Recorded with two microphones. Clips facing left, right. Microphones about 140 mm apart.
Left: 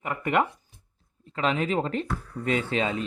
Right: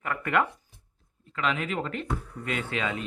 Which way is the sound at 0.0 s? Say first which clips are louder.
Left 2 dB; 20° left (ahead or behind).